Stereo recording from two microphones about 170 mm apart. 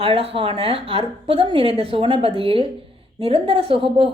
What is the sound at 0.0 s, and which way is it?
A woman's voice, 35° right (ahead or behind).